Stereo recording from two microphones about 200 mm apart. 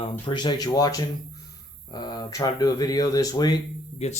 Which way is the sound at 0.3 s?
20° left (ahead or behind).